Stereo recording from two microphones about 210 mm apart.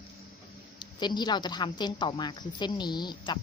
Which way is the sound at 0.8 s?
20° left (ahead or behind).